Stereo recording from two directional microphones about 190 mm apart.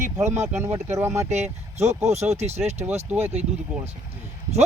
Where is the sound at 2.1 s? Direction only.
35° right (ahead or behind).